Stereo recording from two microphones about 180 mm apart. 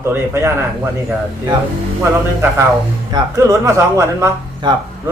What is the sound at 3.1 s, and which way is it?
Speech, 15° right (ahead or behind).